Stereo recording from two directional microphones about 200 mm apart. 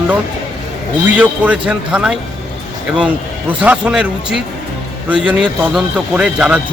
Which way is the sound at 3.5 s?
5° right (ahead or behind).